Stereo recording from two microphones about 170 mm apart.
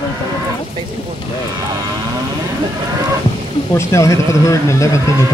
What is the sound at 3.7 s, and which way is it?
Speech, 15° left (ahead or behind).